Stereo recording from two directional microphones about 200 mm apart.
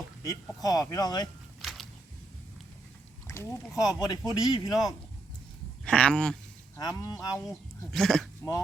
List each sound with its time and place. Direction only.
0.2 s speech: 15° left (ahead or behind)
1.6 s a sound: centre (ahead or behind)
3.2 s speech: 15° left (ahead or behind)
5.8 s speech: 5° left (ahead or behind)
6.7 s speech: 20° left (ahead or behind)
7.9 s speech: centre (ahead or behind)